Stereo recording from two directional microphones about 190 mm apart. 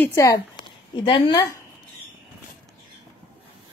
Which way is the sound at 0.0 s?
15° left (ahead or behind).